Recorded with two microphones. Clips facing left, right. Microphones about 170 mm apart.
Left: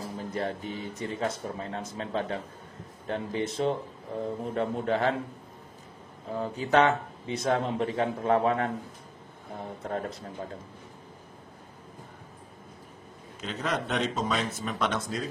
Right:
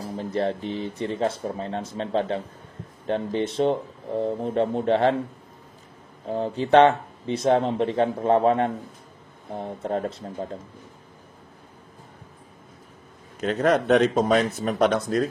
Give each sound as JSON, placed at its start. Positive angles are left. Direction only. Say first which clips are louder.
{"t": 0.0, "sound": "speech", "louder": "right 6 dB", "side_deg": -30}
{"t": 6.2, "sound": "speech", "louder": "right 6 dB", "side_deg": -30}
{"t": 9.8, "sound": "speech", "louder": "right 6 dB", "side_deg": -30}
{"t": 13.4, "sound": "speech", "louder": "right 10 dB", "side_deg": -60}